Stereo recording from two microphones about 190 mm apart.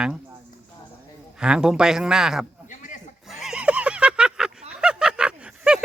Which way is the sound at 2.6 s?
40° left (ahead or behind).